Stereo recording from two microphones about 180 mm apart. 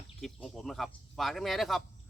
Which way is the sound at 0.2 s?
Centre (ahead or behind).